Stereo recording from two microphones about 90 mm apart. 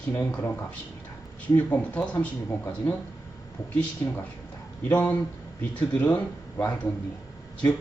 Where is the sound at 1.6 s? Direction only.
20° left (ahead or behind).